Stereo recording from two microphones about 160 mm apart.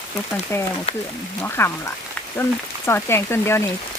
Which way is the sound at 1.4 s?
15° left (ahead or behind).